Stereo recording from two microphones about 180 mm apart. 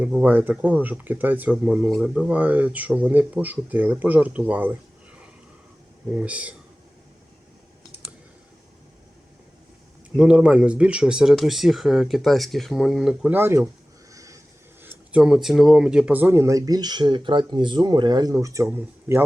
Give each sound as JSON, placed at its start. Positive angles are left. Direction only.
{"t": 0.0, "sound": "speech", "side_deg": -10}
{"t": 6.1, "sound": "speech", "side_deg": -5}
{"t": 10.2, "sound": "speech", "side_deg": -5}